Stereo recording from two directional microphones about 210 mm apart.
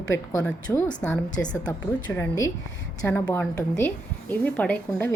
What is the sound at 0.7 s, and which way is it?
A woman's voice, centre (ahead or behind).